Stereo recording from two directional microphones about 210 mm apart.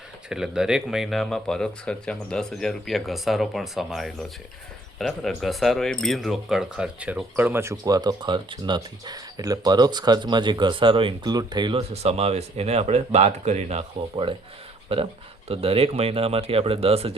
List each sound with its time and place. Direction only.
0.3 s speech: 5° right (ahead or behind); by 17.2 s 30° right (ahead or behind)